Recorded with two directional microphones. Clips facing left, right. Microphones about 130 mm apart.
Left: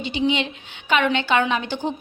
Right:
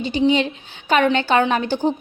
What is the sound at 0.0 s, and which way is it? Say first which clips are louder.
A woman's voice: right 5 dB; 40° right (ahead or behind).